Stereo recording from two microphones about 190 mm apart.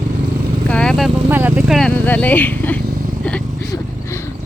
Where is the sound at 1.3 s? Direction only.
10° right (ahead or behind).